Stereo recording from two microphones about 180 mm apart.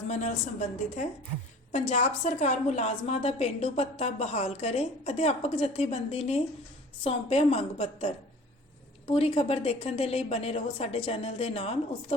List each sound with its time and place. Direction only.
0.1 s a woman's voice: 40° left (ahead or behind)